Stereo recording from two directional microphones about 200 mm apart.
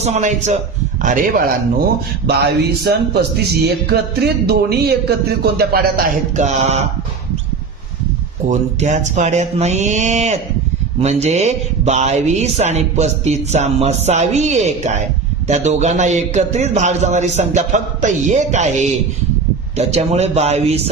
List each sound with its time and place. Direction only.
0.0 s speech: 35° right (ahead or behind)
8.4 s speech: 35° right (ahead or behind)